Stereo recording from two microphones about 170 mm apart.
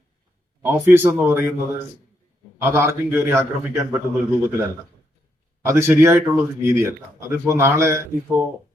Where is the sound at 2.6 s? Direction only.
15° right (ahead or behind).